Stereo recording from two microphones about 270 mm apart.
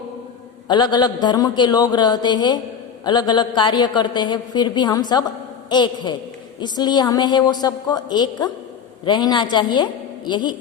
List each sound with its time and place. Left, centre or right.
0.7 s a woman's voice: centre